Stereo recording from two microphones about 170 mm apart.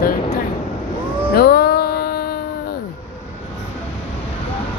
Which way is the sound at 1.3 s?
65° left (ahead or behind).